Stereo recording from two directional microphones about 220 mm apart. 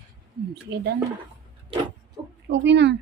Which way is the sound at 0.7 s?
55° right (ahead or behind).